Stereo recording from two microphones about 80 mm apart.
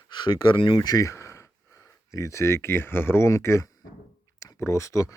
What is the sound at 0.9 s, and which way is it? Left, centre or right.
Speech, left.